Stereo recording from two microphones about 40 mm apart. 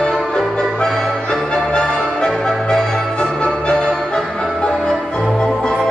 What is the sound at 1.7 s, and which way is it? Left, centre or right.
Music, left.